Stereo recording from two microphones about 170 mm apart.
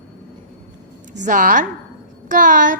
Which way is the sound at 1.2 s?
50° right (ahead or behind).